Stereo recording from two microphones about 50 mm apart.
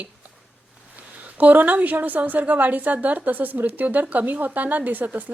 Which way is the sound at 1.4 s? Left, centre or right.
Right.